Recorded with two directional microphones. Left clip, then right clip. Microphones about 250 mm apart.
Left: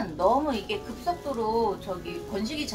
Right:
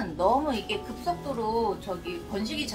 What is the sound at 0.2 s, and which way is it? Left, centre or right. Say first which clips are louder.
A woman's voice: left 1 dB; centre.